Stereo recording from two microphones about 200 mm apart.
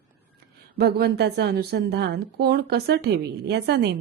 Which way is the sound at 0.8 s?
55° right (ahead or behind).